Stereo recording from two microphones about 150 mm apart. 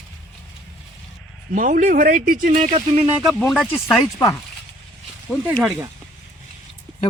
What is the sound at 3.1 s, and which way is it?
Speech, centre (ahead or behind).